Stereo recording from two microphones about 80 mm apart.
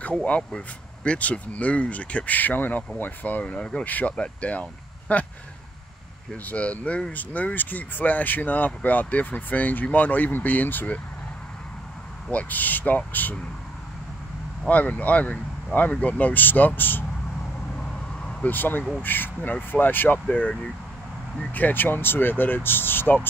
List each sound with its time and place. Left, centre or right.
0.2 s speech: centre
6.3 s speech: centre
12.3 s speech: centre
14.7 s speech: centre
17.7 s vehicle: centre
18.5 s speech: left